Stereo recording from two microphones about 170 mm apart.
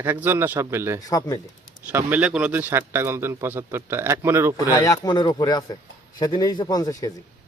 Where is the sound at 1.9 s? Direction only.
10° right (ahead or behind).